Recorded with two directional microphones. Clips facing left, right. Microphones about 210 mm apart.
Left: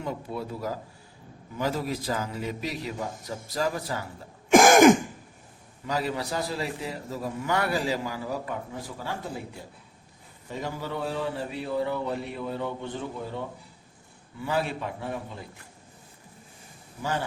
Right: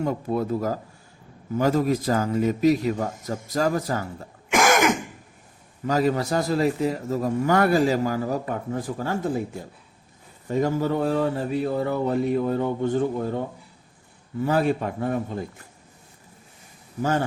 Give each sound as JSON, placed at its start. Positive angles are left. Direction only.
{"t": 0.0, "sound": "a man's voice", "side_deg": -45}
{"t": 4.5, "sound": "throat clearing", "side_deg": 35}
{"t": 5.8, "sound": "a man's voice", "side_deg": -45}
{"t": 10.5, "sound": "a man's voice", "side_deg": -45}
{"t": 14.4, "sound": "a man's voice", "side_deg": -45}
{"t": 17.0, "sound": "a man's voice", "side_deg": -45}